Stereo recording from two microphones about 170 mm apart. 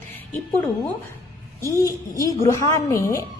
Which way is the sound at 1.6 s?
20° left (ahead or behind).